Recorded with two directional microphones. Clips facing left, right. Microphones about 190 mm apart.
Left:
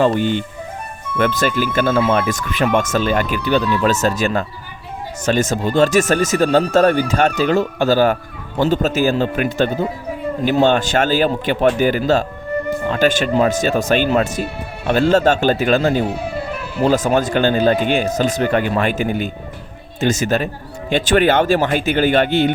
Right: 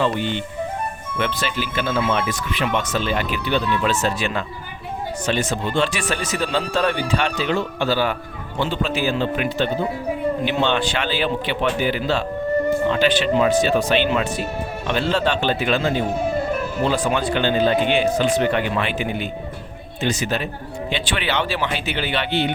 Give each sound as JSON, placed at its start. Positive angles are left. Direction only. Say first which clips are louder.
{"t": 0.0, "sound": "speech", "louder": "left 6 dB", "side_deg": 45}